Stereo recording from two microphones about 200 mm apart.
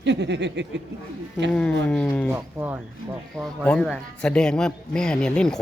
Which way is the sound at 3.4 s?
5° left (ahead or behind).